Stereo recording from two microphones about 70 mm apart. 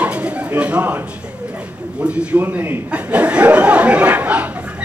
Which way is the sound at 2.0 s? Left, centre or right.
Centre.